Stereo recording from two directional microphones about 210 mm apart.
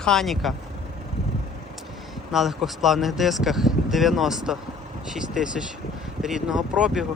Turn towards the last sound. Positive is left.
turn(degrees=-5)  # may be behind; listen again after turning